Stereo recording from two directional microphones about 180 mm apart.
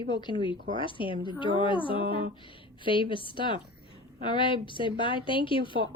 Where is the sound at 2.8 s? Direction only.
30° left (ahead or behind).